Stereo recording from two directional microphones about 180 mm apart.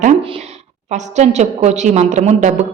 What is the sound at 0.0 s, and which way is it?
A woman's voice, 35° right (ahead or behind).